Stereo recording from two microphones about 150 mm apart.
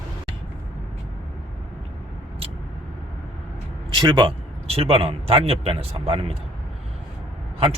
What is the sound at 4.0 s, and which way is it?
A man's voice, 30° right (ahead or behind).